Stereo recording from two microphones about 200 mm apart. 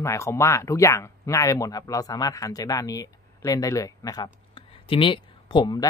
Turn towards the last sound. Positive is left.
turn(degrees=20)  # may be behind; listen again after turning